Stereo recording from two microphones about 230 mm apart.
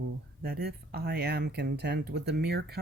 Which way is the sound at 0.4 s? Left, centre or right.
Right.